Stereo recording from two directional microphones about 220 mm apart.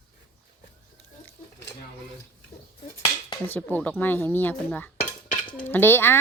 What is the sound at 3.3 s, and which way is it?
A woman's voice, 10° left (ahead or behind).